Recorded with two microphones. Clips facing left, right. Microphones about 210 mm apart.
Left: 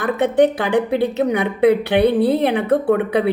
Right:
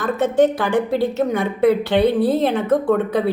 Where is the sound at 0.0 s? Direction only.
65° left (ahead or behind).